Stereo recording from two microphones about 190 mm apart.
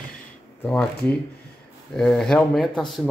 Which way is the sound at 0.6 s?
10° left (ahead or behind).